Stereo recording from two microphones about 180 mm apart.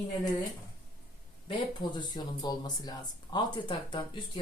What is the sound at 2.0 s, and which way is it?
Speech, 25° left (ahead or behind).